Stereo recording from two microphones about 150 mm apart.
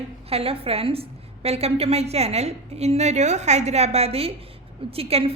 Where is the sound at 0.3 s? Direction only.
40° right (ahead or behind).